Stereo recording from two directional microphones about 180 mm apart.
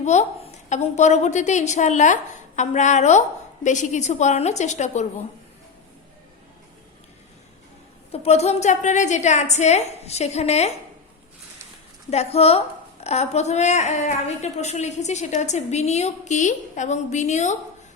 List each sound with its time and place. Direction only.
0.0 s a woman's voice: 40° left (ahead or behind)
8.1 s a woman's voice: 35° left (ahead or behind)
12.1 s a woman's voice: 35° left (ahead or behind)